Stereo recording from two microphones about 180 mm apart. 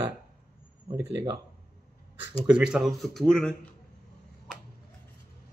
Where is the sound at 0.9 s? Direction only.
15° right (ahead or behind).